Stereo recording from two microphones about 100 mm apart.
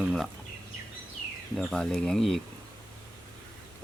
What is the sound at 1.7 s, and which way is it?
Speech, 5° left (ahead or behind).